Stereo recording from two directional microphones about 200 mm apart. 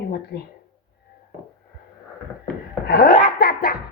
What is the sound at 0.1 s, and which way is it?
Speech, 55° left (ahead or behind).